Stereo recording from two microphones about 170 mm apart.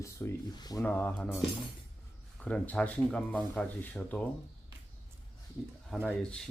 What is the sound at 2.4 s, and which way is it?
Speech, 5° left (ahead or behind).